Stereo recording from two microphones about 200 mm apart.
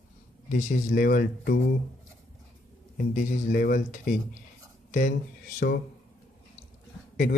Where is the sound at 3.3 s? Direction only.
45° left (ahead or behind).